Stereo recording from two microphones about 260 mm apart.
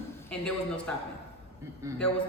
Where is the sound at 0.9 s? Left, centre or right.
Centre.